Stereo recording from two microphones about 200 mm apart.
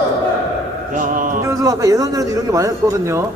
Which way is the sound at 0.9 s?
40° right (ahead or behind).